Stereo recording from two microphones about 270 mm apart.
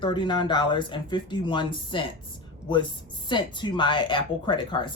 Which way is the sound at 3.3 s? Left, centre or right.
Centre.